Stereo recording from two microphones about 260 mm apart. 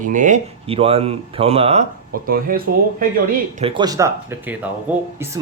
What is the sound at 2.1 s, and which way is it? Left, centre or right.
Speech, right.